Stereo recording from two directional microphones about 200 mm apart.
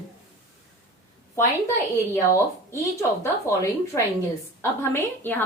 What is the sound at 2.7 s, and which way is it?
A woman's voice, 15° left (ahead or behind).